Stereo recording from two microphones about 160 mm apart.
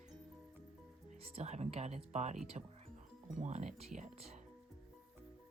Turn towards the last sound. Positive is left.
turn(degrees=-40)  # may be behind; listen again after turning